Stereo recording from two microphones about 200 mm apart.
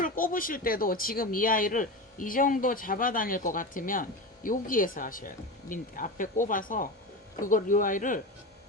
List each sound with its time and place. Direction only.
0.0 s speech: 45° left (ahead or behind)